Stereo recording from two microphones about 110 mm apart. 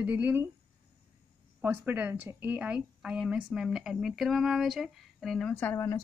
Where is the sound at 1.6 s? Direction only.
20° right (ahead or behind); by 5.5 s centre (ahead or behind).